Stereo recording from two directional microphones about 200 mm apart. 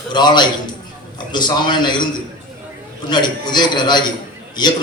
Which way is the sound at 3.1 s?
20° left (ahead or behind).